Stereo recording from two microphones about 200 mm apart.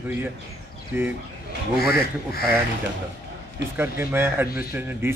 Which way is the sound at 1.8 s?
50° left (ahead or behind).